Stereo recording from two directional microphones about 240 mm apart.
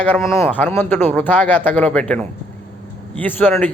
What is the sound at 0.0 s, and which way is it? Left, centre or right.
A man's voice, centre.